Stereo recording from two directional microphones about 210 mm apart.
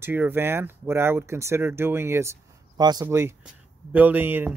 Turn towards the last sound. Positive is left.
turn(degrees=-10)  # may be behind; listen again after turning